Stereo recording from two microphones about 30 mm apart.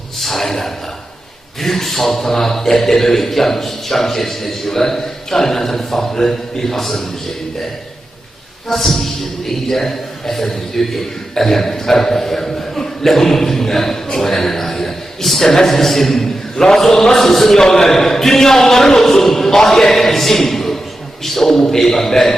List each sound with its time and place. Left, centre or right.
0.2 s a man's voice: centre
8.7 s a man's voice: centre
17.6 s a man's voice: centre
20.0 s a sound: centre
21.2 s a man's voice: centre